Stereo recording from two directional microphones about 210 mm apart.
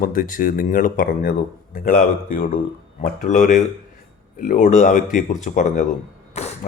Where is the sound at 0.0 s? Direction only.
40° left (ahead or behind).